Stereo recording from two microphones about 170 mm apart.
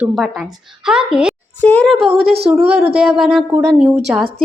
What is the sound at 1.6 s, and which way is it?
Speech, 10° left (ahead or behind).